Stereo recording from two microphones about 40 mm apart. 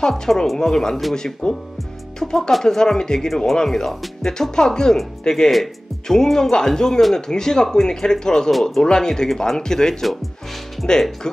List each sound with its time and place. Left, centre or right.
0.2 s speech: centre